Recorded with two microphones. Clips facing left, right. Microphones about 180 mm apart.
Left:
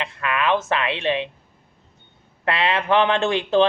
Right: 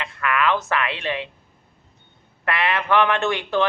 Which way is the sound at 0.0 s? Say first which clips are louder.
Right 1 dB; 25° left (ahead or behind).